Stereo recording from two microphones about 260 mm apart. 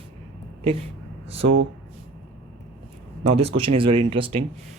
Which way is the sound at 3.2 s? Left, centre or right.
Right.